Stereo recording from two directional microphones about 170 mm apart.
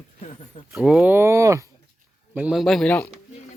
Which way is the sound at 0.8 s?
5° right (ahead or behind).